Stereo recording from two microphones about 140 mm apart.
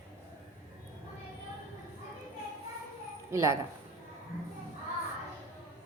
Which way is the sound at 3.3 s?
20° right (ahead or behind).